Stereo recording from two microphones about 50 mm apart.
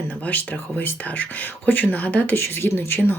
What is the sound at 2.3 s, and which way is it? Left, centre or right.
Speech, left.